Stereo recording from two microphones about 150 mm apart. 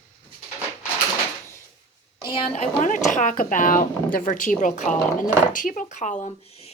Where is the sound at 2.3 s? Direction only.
40° left (ahead or behind).